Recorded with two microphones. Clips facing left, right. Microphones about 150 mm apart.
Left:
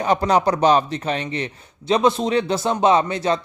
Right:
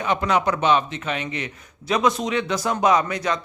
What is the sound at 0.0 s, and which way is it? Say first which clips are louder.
Speech: left 4 dB; 35° left (ahead or behind).